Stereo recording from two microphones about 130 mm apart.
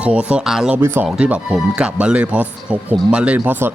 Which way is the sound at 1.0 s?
5° right (ahead or behind).